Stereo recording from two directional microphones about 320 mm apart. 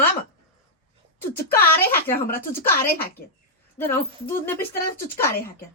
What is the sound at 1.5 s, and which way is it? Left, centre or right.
Speech, centre.